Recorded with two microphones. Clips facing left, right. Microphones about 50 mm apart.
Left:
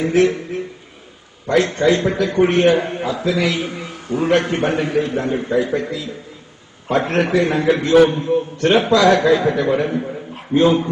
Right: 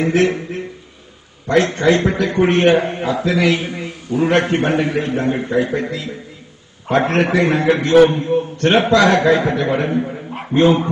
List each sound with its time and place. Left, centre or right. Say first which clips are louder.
0.0 s a man's voice: even; right
1.5 s a man's voice: right 1 dB; right
6.9 s a man's voice: right 1 dB; right
10.3 s a sound: right 1 dB; right